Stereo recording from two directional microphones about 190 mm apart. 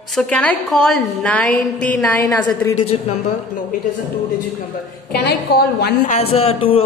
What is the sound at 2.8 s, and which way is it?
Speech, 30° left (ahead or behind).